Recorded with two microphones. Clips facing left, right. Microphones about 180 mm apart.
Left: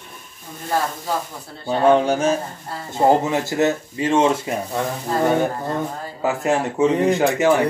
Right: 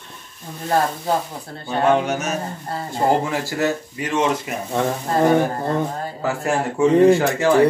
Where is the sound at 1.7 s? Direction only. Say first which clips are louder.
Left 3 dB; 30° left (ahead or behind).